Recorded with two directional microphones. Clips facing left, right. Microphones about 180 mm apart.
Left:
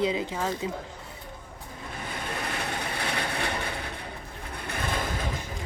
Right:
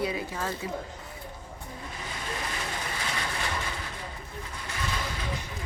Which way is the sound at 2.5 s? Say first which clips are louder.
Left 3 dB; 60° left (ahead or behind).